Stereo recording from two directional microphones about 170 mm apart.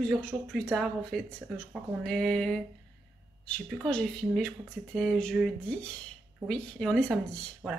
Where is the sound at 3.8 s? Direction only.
5° left (ahead or behind).